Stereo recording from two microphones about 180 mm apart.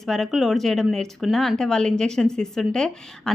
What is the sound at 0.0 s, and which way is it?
Speech, centre (ahead or behind).